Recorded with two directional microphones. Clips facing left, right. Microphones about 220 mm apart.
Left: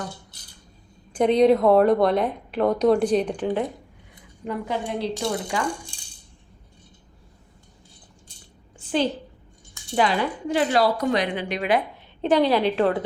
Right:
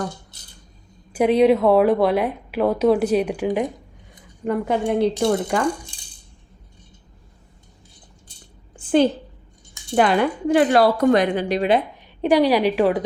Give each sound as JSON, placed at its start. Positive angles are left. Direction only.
{"t": 1.1, "sound": "a woman's voice", "side_deg": -5}
{"t": 4.4, "sound": "a woman's voice", "side_deg": -55}
{"t": 8.7, "sound": "a sound", "side_deg": -50}
{"t": 9.9, "sound": "a woman's voice", "side_deg": -55}
{"t": 12.2, "sound": "a woman's voice", "side_deg": -10}